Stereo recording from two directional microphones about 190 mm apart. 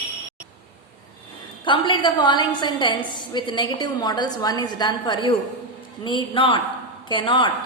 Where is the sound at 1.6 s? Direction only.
25° left (ahead or behind).